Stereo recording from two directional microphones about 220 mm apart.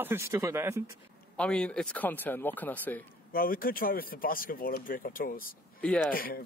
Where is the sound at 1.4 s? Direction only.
5° left (ahead or behind).